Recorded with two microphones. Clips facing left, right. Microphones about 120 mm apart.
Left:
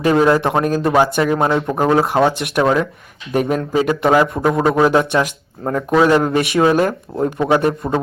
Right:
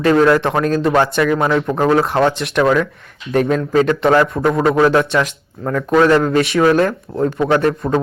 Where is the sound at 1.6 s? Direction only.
10° left (ahead or behind).